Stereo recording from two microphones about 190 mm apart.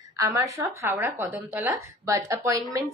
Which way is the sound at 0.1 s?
15° right (ahead or behind).